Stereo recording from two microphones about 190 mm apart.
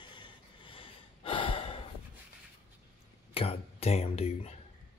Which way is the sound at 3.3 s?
30° left (ahead or behind).